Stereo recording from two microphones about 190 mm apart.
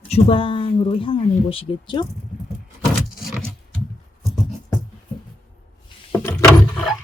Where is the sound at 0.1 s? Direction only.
30° left (ahead or behind).